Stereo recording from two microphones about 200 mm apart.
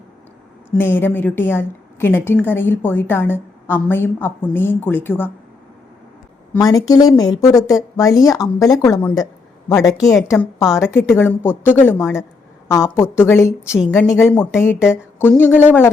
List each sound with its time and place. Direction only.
0.7 s a woman's voice: 10° left (ahead or behind)
6.5 s a woman's voice: 20° left (ahead or behind)